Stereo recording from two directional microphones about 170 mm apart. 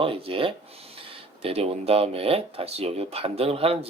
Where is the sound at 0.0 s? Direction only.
30° right (ahead or behind).